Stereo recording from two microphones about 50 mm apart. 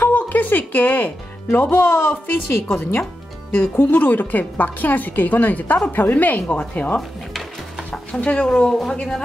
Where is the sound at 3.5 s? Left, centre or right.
Left.